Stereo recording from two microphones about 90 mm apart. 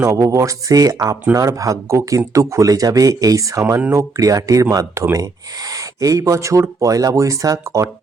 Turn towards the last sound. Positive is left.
turn(degrees=-35)  # may be behind; listen again after turning